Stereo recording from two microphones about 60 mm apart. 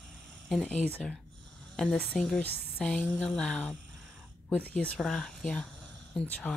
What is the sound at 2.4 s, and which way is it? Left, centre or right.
Speech, left.